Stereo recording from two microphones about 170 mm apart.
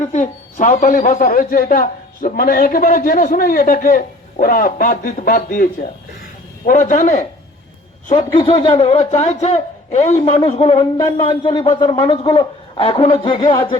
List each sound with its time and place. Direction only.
0.0 s a man's voice: 45° left (ahead or behind)
6.7 s speech: 50° left (ahead or behind)
8.1 s a man's voice: 25° left (ahead or behind)